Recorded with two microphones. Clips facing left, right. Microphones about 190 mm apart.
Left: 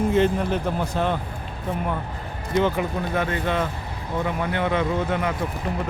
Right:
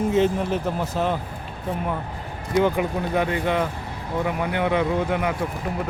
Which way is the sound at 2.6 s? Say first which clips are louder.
Right 2 dB; 15° right (ahead or behind).